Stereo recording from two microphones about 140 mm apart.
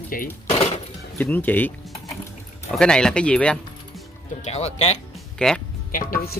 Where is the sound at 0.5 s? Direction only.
50° left (ahead or behind).